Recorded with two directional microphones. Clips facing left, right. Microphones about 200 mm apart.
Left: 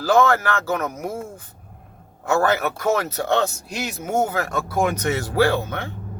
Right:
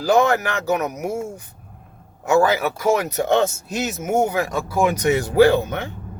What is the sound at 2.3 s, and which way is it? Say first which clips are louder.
Speech: right 3 dB; 10° right (ahead or behind).